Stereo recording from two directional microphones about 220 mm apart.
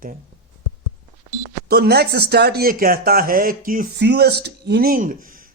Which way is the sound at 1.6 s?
45° right (ahead or behind).